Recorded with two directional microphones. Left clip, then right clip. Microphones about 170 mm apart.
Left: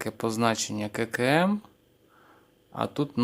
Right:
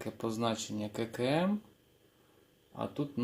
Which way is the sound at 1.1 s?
35° left (ahead or behind).